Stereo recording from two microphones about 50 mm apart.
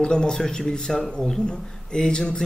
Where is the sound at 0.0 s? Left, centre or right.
Centre.